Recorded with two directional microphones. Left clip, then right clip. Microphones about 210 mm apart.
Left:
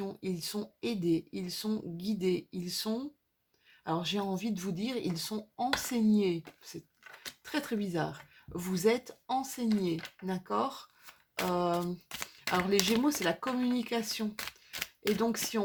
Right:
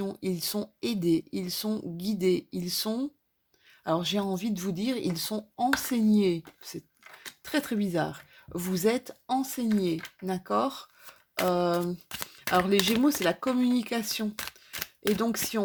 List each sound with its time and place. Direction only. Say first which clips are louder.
0.0 s speech: right 5 dB; 40° right (ahead or behind)
7.4 s speech: right 5 dB; 40° right (ahead or behind)
13.2 s speech: right 5 dB; 35° right (ahead or behind)
14.3 s camera: right 2 dB; 20° right (ahead or behind)
15.2 s speech: right 2 dB; 35° right (ahead or behind)